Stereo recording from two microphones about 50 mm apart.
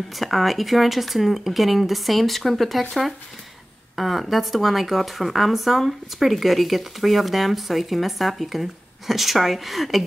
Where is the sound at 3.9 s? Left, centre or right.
Centre.